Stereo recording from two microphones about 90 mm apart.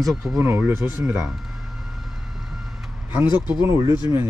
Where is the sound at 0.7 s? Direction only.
30° right (ahead or behind).